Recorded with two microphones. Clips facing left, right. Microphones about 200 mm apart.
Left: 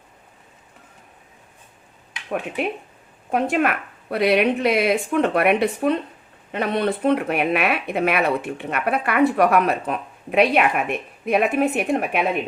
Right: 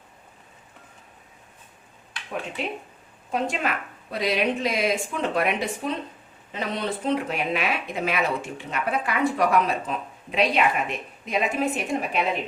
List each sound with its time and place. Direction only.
2.6 s speech: 60° left (ahead or behind)